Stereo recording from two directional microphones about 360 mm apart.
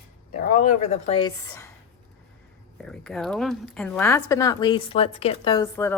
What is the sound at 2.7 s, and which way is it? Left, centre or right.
A woman's voice, centre.